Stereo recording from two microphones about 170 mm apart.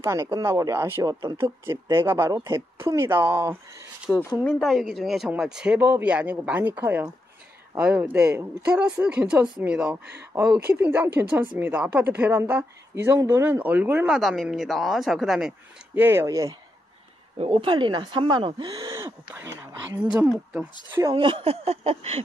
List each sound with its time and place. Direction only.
0.0 s speech: 20° right (ahead or behind)
4.1 s speech: centre (ahead or behind); by 16.5 s 20° right (ahead or behind)
17.4 s speech: 30° right (ahead or behind)
18.9 s speech: 15° right (ahead or behind)
21.0 s speech: 25° right (ahead or behind)